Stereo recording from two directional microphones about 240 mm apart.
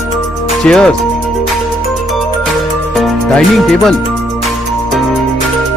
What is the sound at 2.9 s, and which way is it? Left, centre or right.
Music, centre.